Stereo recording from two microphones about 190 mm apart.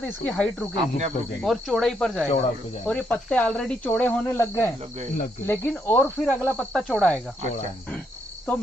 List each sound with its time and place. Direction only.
0.2 s speech: 5° left (ahead or behind)
0.7 s speech: 35° right (ahead or behind)
1.4 s speech: centre (ahead or behind)